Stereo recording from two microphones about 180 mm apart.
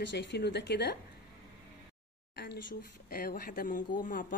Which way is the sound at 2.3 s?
65° left (ahead or behind).